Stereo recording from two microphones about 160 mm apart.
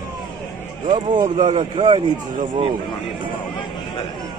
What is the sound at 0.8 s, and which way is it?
A man's voice, 30° right (ahead or behind).